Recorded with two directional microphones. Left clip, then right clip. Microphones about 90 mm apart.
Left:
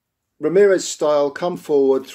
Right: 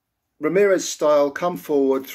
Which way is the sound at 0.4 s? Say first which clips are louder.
Left 3 dB; 25° left (ahead or behind).